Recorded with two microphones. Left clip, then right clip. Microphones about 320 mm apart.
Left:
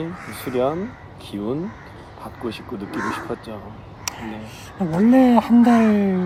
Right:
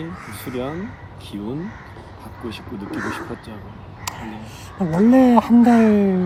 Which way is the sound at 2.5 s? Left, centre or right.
Centre.